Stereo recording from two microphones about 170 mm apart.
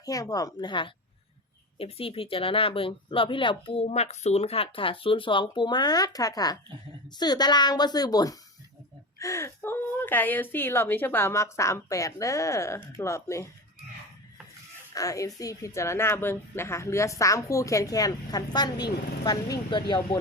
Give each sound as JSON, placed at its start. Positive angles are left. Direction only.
{"t": 0.0, "sound": "a woman's voice", "side_deg": 20}
{"t": 14.9, "sound": "a woman's voice", "side_deg": 20}